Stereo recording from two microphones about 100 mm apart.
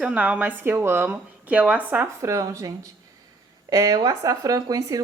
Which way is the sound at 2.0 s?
30° right (ahead or behind).